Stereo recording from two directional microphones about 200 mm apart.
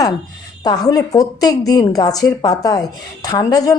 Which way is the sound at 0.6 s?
20° left (ahead or behind).